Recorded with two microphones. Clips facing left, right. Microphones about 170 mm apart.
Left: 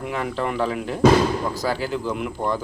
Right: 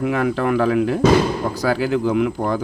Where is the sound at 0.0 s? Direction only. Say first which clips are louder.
Right 6 dB; 90° right.